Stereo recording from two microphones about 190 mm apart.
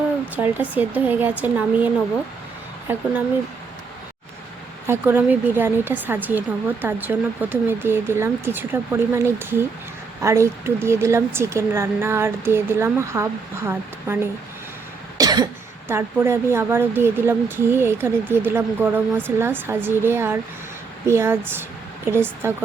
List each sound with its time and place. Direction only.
0.3 s speech: 10° right (ahead or behind)
2.9 s speech: 10° right (ahead or behind)
4.9 s speech: 10° right (ahead or behind)
15.2 s cough: 20° right (ahead or behind)
15.9 s speech: 10° right (ahead or behind)